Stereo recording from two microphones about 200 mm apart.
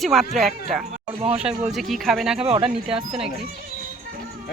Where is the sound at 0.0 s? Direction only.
Centre (ahead or behind).